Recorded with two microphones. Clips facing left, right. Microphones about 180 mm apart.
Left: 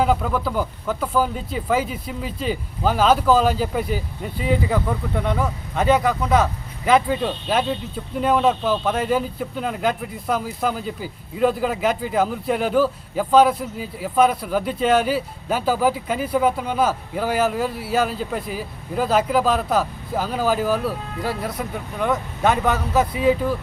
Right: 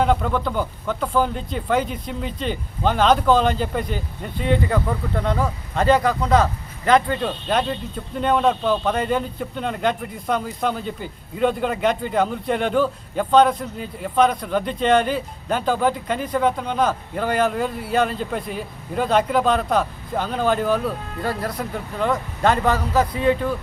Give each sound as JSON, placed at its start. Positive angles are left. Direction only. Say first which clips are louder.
{"t": 0.0, "sound": "speech", "louder": "even", "side_deg": 5}